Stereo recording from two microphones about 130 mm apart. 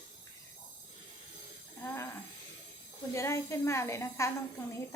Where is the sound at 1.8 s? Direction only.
20° left (ahead or behind).